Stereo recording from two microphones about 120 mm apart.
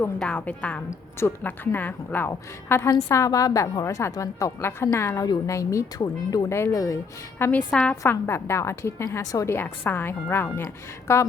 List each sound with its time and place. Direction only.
0.2 s a woman's voice: 15° left (ahead or behind)